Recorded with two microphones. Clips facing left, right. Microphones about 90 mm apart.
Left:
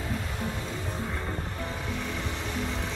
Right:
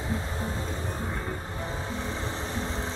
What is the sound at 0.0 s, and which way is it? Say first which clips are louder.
Music: right 1 dB; 25° right (ahead or behind).